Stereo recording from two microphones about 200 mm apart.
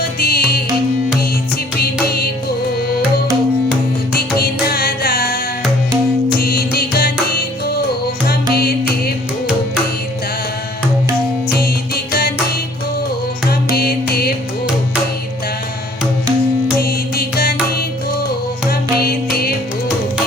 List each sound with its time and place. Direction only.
0.2 s music: 50° left (ahead or behind)
1.8 s music: 50° left (ahead or behind)
4.1 s music: 50° left (ahead or behind)
6.4 s music: 50° left (ahead or behind)
13.5 s music: 50° left (ahead or behind)
16.8 s music: 50° left (ahead or behind)